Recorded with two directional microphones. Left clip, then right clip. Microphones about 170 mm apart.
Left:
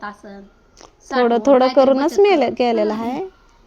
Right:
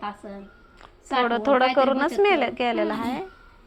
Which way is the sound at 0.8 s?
85° left.